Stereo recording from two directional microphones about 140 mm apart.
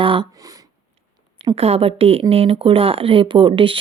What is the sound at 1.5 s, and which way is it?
Speech, 45° right (ahead or behind).